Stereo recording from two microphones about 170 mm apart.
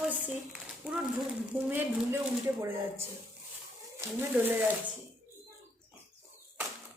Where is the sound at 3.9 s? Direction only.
15° right (ahead or behind).